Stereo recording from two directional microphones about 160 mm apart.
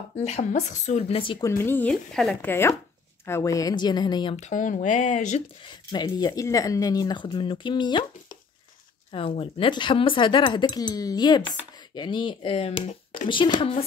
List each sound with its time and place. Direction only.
0.1 s speech: 45° left (ahead or behind)
1.6 s speech: 10° left (ahead or behind)
3.3 s speech: 20° left (ahead or behind)
4.4 s speech: 50° left (ahead or behind)
5.6 s speech: 30° left (ahead or behind)
9.1 s speech: 35° left (ahead or behind)